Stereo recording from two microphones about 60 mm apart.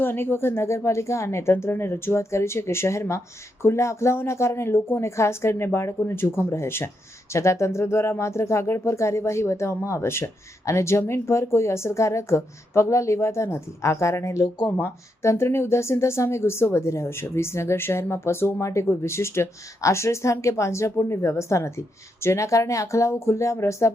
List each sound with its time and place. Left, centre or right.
0.0 s speech: left
7.3 s speech: left